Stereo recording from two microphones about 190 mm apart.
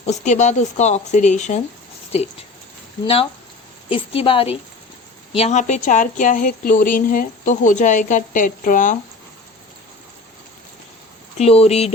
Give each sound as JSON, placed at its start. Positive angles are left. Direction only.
{"t": 0.0, "sound": "speech", "side_deg": 35}
{"t": 3.8, "sound": "a woman's voice", "side_deg": 30}
{"t": 11.3, "sound": "speech", "side_deg": 30}